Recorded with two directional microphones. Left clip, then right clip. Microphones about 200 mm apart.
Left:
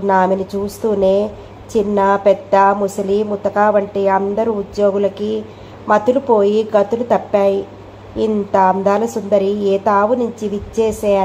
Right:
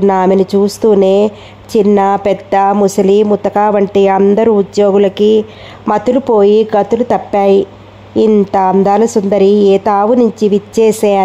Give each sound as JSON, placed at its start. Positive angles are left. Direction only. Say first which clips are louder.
{"t": 0.0, "sound": "a woman's voice", "louder": "right 5 dB", "side_deg": -45}